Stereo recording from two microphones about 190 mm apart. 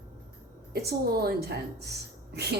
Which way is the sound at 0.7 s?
60° right (ahead or behind).